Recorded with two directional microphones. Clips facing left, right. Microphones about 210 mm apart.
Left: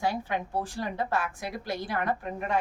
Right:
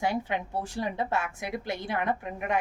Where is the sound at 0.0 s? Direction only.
20° right (ahead or behind).